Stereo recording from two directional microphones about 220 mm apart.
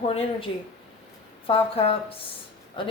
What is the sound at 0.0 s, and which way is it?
Speech, 25° left (ahead or behind).